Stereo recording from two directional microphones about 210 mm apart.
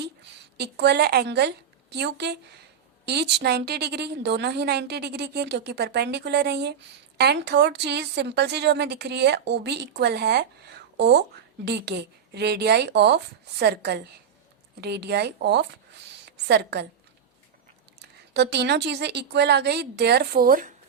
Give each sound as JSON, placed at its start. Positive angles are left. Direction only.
{"t": 0.5, "sound": "a woman's voice", "side_deg": -50}
{"t": 16.2, "sound": "a sound", "side_deg": -55}
{"t": 18.0, "sound": "a woman's voice", "side_deg": -55}